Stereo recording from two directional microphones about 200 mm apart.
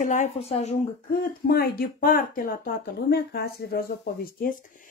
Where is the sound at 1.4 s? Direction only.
50° left (ahead or behind).